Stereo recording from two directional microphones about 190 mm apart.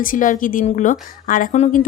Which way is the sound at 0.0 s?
45° left (ahead or behind).